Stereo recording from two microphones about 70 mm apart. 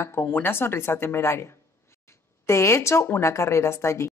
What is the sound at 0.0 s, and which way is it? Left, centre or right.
A woman's voice, left.